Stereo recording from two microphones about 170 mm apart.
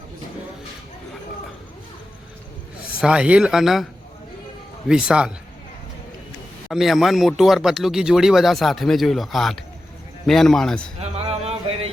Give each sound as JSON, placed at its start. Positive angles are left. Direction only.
{"t": 3.0, "sound": "speech", "side_deg": -5}
{"t": 4.9, "sound": "speech", "side_deg": -5}
{"t": 6.7, "sound": "speech", "side_deg": 0}
{"t": 11.0, "sound": "a sound", "side_deg": -35}